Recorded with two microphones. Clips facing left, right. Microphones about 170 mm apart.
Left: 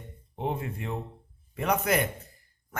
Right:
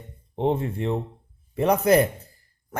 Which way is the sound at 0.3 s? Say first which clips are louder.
Right 8 dB; 25° right (ahead or behind).